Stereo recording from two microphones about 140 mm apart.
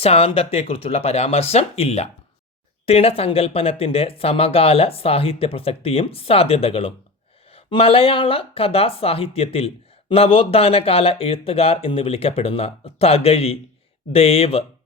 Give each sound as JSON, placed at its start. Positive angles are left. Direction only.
{"t": 0.0, "sound": "speech", "side_deg": 45}